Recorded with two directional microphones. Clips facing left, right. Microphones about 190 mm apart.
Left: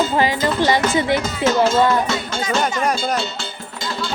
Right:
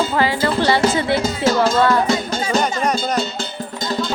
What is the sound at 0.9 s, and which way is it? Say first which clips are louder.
Speech: left 1 dB; 15° left (ahead or behind).